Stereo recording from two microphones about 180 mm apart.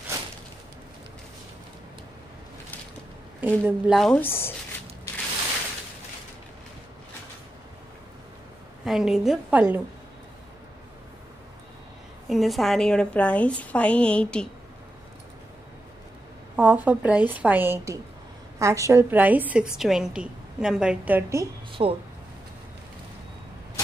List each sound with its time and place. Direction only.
3.3 s a woman's voice: 10° right (ahead or behind); by 4.6 s 10° left (ahead or behind)
8.8 s a woman's voice: centre (ahead or behind)
12.3 s a woman's voice: centre (ahead or behind)
16.5 s a woman's voice: 10° right (ahead or behind)
21.8 s speech: 30° right (ahead or behind)